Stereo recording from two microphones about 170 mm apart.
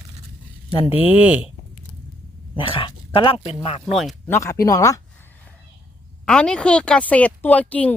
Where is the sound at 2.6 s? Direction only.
30° left (ahead or behind).